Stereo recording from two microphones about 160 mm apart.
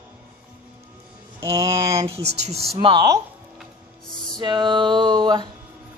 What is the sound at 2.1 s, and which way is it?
Speech, 45° right (ahead or behind).